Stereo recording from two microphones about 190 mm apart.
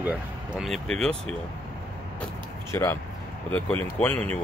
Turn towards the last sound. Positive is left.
turn(degrees=10)  # may be behind; listen again after turning